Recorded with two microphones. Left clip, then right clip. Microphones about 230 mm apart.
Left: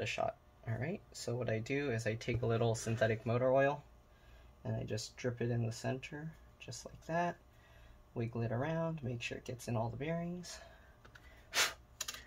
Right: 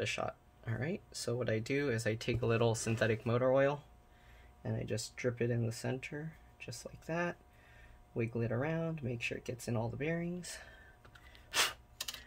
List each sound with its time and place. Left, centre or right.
0.0 s speech: right
11.5 s computer keyboard: centre